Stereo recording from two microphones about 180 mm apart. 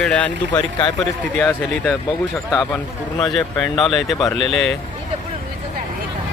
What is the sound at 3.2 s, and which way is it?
Speech, centre (ahead or behind).